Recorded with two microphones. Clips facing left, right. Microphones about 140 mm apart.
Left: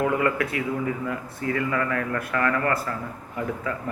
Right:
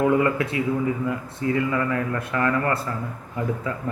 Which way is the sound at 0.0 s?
25° right (ahead or behind).